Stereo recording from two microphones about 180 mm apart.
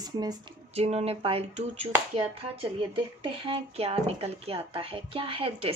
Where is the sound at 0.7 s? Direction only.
35° right (ahead or behind).